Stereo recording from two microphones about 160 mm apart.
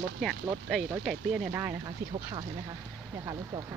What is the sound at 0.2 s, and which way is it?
Speech, centre (ahead or behind).